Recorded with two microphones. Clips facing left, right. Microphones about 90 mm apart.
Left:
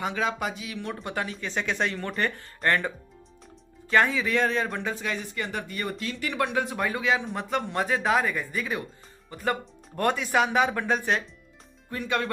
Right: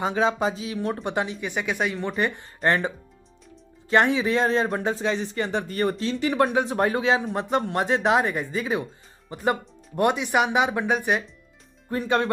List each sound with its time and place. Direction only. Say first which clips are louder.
0.0 s speech: right 5 dB; 30° right (ahead or behind)
1.0 s speech: right 5 dB; 20° right (ahead or behind)
3.9 s speech: right 3 dB; 25° right (ahead or behind)
11.9 s speech: right 5 dB; 35° right (ahead or behind)